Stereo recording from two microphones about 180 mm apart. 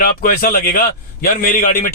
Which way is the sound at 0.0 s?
55° left (ahead or behind).